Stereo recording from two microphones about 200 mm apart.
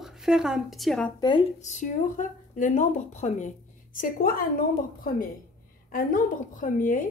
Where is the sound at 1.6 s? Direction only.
35° left (ahead or behind).